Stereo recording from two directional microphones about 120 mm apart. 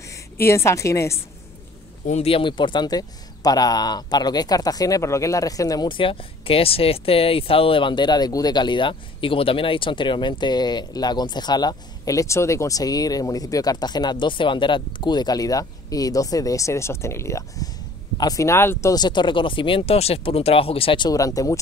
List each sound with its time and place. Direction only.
0.0 s a woman's voice: 25° left (ahead or behind)
2.2 s a man's voice: 45° left (ahead or behind); by 18.9 s 20° left (ahead or behind)
18.9 s speech: 40° left (ahead or behind)
21.1 s speech: 30° left (ahead or behind)